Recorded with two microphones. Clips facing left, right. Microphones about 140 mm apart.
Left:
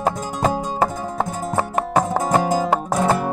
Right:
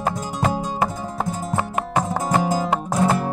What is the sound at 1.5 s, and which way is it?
Music, 40° left (ahead or behind).